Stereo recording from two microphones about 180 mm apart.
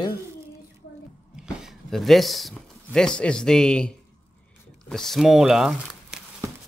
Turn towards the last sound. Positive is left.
turn(degrees=0)  # may be behind; listen again after turning